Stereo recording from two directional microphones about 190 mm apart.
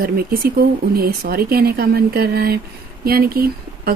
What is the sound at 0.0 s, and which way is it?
Speech, 50° right (ahead or behind).